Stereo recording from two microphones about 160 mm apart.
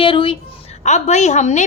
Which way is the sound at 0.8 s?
45° left (ahead or behind).